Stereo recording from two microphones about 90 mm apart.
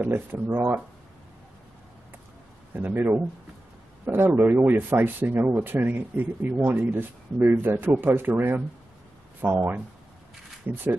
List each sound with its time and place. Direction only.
0.0 s speech: 20° right (ahead or behind)
2.7 s speech: 20° right (ahead or behind)